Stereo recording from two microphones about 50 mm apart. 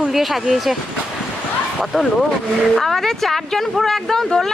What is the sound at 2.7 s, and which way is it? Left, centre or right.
A woman's voice, centre.